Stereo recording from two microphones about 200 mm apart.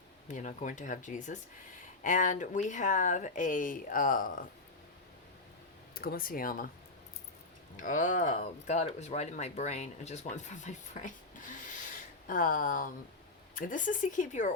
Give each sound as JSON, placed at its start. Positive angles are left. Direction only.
{"t": 0.3, "sound": "speech", "side_deg": 40}
{"t": 5.9, "sound": "speech", "side_deg": 50}
{"t": 7.8, "sound": "speech", "side_deg": 40}
{"t": 12.3, "sound": "speech", "side_deg": 40}